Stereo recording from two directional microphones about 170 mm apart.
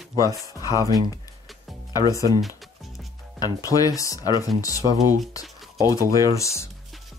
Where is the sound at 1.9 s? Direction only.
20° left (ahead or behind).